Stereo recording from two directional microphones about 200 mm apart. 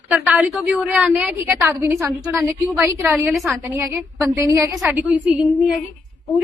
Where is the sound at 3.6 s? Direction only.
10° right (ahead or behind).